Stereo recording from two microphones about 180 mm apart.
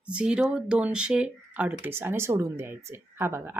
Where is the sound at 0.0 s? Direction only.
5° right (ahead or behind).